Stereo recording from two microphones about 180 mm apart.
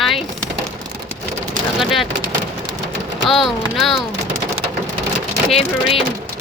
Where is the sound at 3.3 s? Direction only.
Centre (ahead or behind).